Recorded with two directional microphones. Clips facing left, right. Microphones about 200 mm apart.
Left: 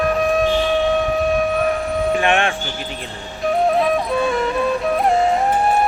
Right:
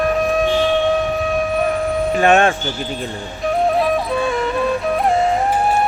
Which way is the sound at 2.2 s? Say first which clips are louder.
Right 8 dB; 40° right (ahead or behind).